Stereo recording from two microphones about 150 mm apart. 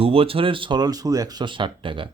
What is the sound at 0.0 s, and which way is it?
Speech, 40° right (ahead or behind).